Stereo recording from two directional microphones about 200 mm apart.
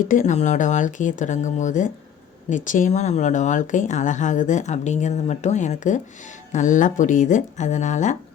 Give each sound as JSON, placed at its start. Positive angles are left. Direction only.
{"t": 0.1, "sound": "speech", "side_deg": 40}